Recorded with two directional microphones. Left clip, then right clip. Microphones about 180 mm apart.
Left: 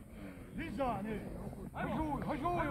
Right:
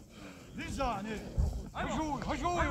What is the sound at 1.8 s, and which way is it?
Speech, 15° left (ahead or behind).